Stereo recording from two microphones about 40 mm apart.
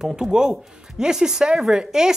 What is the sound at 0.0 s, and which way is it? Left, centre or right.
Speech, centre.